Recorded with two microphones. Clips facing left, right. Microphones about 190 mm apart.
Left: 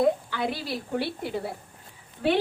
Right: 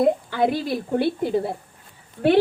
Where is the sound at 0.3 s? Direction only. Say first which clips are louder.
Right 8 dB; 50° right (ahead or behind).